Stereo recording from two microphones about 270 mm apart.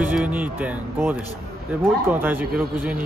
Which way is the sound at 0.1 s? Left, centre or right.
Centre.